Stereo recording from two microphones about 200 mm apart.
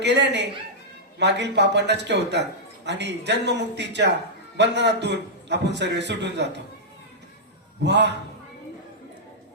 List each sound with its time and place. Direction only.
0.0 s a man's voice: 60° right (ahead or behind)
7.8 s a man's voice: 60° right (ahead or behind)